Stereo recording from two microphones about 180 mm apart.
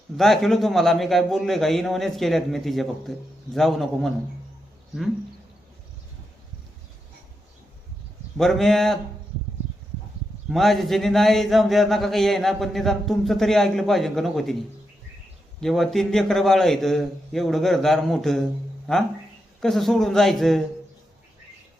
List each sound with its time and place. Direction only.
0.2 s speech: centre (ahead or behind)
8.4 s speech: centre (ahead or behind)
10.5 s speech: centre (ahead or behind)
15.6 s speech: centre (ahead or behind)